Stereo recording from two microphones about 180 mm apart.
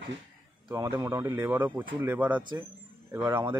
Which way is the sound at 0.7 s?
20° right (ahead or behind).